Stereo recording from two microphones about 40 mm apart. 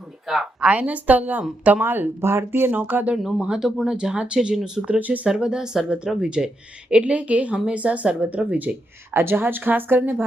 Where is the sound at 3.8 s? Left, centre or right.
Right.